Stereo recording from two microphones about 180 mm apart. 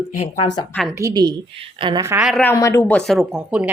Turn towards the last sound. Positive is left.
turn(degrees=-5)  # may be behind; listen again after turning